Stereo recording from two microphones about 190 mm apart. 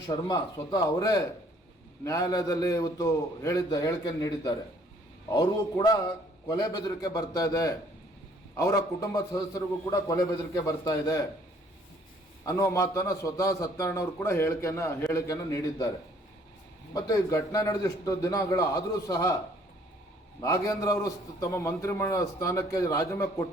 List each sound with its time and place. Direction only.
0.3 s a man's voice: 20° left (ahead or behind)
12.5 s a man's voice: 15° left (ahead or behind)
16.9 s a man's voice: 20° left (ahead or behind)
20.4 s a man's voice: 20° left (ahead or behind)